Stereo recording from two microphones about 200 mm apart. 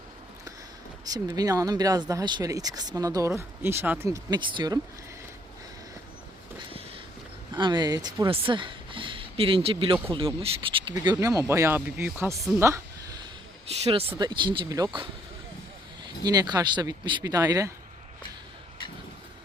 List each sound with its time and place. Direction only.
1.0 s speech: 20° right (ahead or behind)
7.5 s speech: 20° right (ahead or behind)
12.5 s a sound: 15° right (ahead or behind)
13.7 s speech: 30° right (ahead or behind)
16.2 s speech: 20° right (ahead or behind)